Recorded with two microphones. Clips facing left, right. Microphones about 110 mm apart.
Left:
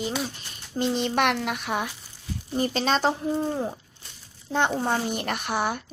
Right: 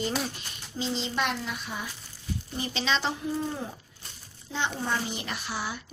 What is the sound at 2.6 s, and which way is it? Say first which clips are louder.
Speech: left 6 dB; 45° left (ahead or behind).